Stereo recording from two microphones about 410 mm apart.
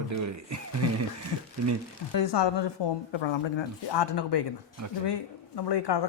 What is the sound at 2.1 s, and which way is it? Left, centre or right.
Speech, left.